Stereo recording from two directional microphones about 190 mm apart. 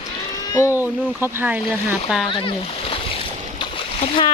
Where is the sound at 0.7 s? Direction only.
10° right (ahead or behind).